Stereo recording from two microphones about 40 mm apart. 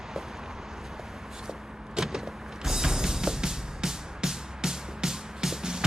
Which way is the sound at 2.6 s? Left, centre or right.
Centre.